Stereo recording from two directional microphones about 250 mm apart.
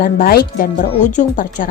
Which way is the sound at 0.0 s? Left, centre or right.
Left.